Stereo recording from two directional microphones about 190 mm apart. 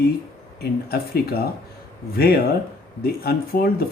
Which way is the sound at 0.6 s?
55° left (ahead or behind).